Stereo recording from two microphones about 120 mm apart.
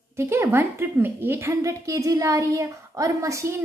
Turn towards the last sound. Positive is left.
turn(degrees=-25)  # may be behind; listen again after turning